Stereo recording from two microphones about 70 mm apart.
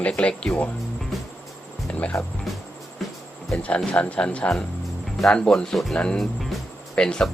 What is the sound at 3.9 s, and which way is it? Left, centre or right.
Speech, centre.